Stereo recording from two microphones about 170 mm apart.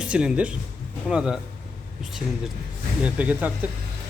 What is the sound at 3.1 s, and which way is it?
Speech, 10° right (ahead or behind).